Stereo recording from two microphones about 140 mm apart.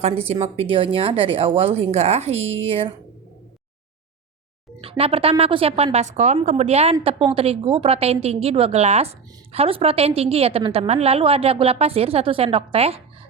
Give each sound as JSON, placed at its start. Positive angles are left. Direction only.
{"t": 0.0, "sound": "a woman's voice", "side_deg": -45}
{"t": 4.8, "sound": "a woman's voice", "side_deg": -40}